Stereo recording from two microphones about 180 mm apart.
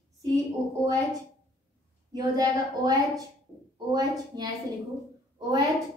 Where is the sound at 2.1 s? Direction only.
20° right (ahead or behind).